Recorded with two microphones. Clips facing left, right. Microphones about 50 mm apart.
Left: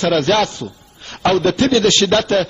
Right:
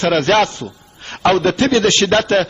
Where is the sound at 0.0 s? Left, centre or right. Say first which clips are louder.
Right 1 dB; right.